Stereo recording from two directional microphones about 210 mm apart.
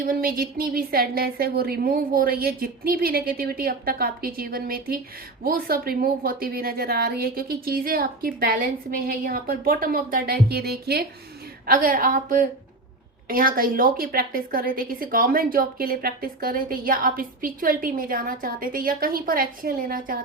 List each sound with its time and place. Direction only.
0.0 s a woman's voice: 45° right (ahead or behind)